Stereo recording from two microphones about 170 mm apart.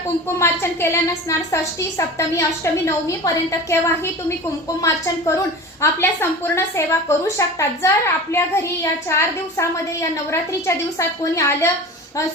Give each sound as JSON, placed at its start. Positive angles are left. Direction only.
{"t": 0.3, "sound": "a woman's voice", "side_deg": 15}